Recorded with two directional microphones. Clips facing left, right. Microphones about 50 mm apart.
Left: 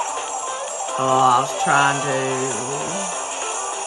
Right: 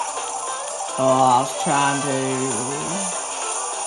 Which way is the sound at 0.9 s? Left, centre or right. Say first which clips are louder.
Even; left.